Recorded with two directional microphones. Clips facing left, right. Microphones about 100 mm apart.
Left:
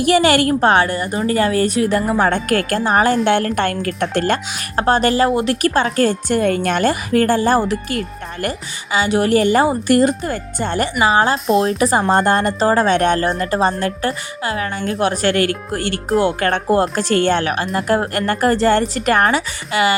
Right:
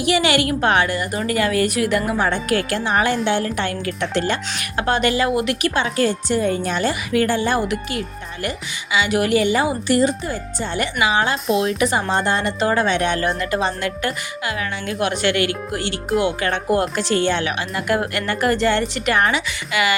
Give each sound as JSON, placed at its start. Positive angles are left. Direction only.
{"t": 0.0, "sound": "speech", "side_deg": 45}
{"t": 3.2, "sound": "a woman's voice", "side_deg": 55}
{"t": 4.8, "sound": "a woman's voice", "side_deg": 35}
{"t": 11.0, "sound": "speech", "side_deg": 35}